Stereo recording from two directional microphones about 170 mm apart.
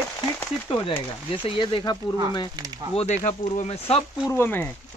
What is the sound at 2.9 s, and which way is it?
Speech, 40° left (ahead or behind).